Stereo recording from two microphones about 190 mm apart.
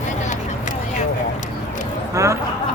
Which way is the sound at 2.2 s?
15° right (ahead or behind).